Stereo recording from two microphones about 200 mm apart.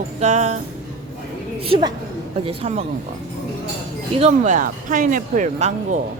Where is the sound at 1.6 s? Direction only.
25° right (ahead or behind).